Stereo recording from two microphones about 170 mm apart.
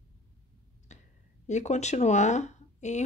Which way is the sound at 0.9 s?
45° left (ahead or behind).